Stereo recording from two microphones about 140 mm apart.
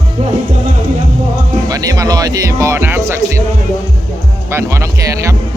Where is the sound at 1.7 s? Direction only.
25° right (ahead or behind).